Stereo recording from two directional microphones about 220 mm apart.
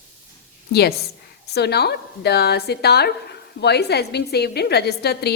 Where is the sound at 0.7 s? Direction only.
45° left (ahead or behind).